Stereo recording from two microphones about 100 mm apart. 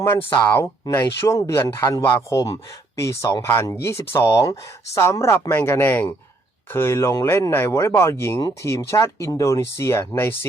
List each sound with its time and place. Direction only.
0.0 s speech: 20° left (ahead or behind)